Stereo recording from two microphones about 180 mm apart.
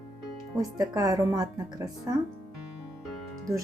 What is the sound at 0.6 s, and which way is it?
Speech, 20° right (ahead or behind).